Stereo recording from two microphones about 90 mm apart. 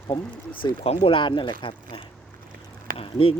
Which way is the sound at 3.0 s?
90° left.